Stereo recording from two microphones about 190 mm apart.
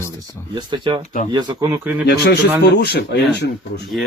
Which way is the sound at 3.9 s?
Centre (ahead or behind).